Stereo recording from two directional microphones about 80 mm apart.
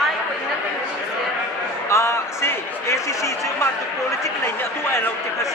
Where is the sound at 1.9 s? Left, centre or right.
Left.